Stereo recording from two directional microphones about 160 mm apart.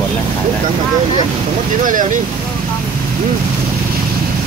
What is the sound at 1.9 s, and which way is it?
Speech, 55° right (ahead or behind).